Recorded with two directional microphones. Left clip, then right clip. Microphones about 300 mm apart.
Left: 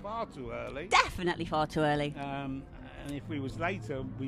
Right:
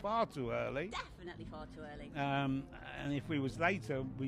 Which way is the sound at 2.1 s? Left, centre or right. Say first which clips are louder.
Right 1 dB; centre.